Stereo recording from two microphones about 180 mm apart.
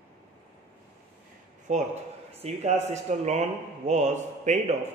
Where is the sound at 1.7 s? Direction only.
40° right (ahead or behind).